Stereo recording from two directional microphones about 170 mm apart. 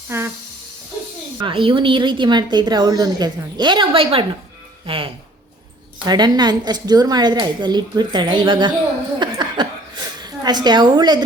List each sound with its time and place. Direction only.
0.1 s speech: 15° right (ahead or behind)
1.4 s a woman's voice: 30° right (ahead or behind)
9.1 s a sound: 25° right (ahead or behind)
10.2 s a woman's voice: 25° right (ahead or behind)